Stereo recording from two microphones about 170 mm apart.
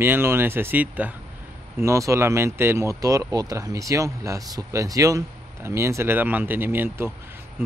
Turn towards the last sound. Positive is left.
turn(degrees=-15)  # may be behind; listen again after turning